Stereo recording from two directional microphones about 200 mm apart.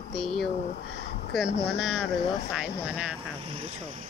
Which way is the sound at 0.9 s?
50° left (ahead or behind).